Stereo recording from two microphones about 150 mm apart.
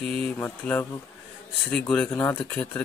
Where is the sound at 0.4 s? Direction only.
15° left (ahead or behind).